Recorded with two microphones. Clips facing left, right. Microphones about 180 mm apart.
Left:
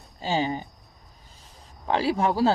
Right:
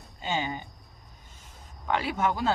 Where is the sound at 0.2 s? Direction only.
35° left (ahead or behind).